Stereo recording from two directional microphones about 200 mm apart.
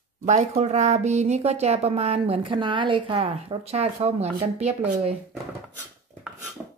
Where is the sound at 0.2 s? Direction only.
35° right (ahead or behind).